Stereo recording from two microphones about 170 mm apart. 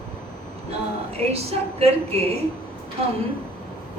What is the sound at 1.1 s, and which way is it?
A woman's voice, 35° right (ahead or behind).